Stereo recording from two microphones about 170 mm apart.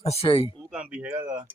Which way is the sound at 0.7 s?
5° right (ahead or behind).